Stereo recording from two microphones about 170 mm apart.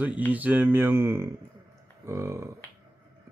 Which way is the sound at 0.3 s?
10° right (ahead or behind).